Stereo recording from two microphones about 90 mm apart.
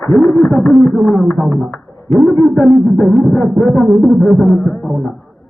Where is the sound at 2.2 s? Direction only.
35° right (ahead or behind).